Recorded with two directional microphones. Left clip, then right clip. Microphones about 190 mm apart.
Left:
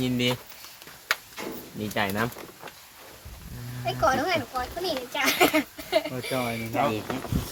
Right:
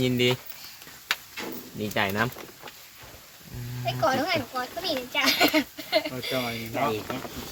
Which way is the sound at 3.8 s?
Centre (ahead or behind).